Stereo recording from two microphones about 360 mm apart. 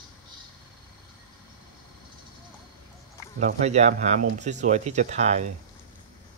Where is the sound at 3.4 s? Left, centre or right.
Centre.